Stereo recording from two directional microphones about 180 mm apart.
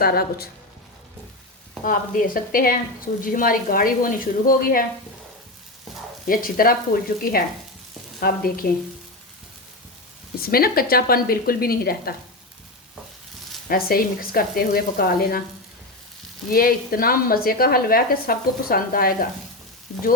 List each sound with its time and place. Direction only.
0.0 s a woman's voice: 60° left (ahead or behind)
1.8 s speech: 50° left (ahead or behind)
6.2 s a woman's voice: 55° left (ahead or behind)
10.4 s a woman's voice: 55° left (ahead or behind)
13.7 s a woman's voice: 55° left (ahead or behind)
16.5 s a woman's voice: 55° left (ahead or behind)